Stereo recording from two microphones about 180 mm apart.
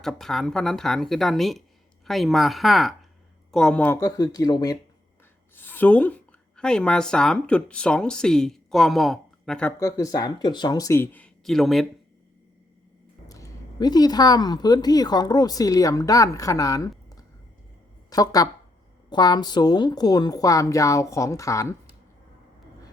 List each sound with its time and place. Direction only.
0.0 s a woman's voice: centre (ahead or behind)
4.2 s speech: 20° left (ahead or behind)
5.5 s speech: 10° left (ahead or behind)
9.8 s speech: 20° left (ahead or behind); by 11.9 s centre (ahead or behind)
13.2 s speech: 20° left (ahead or behind)
18.1 s speech: 20° left (ahead or behind)